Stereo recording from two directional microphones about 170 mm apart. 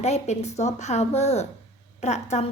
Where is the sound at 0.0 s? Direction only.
40° left (ahead or behind).